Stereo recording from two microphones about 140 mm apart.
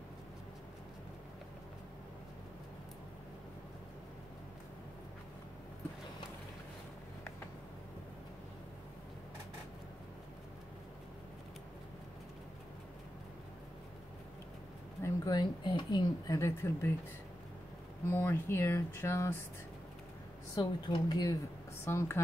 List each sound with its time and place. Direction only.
15.0 s speech: 30° left (ahead or behind)
18.1 s speech: 15° left (ahead or behind)
20.5 s speech: 30° left (ahead or behind)
21.8 s speech: 20° left (ahead or behind)